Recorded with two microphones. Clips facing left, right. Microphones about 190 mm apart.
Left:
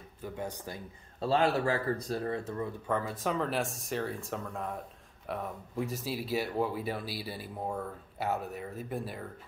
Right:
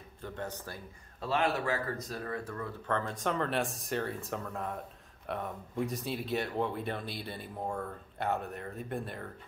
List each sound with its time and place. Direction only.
0.2 s speech: 10° left (ahead or behind)
1.2 s speech: 30° left (ahead or behind)
2.9 s speech: 10° left (ahead or behind)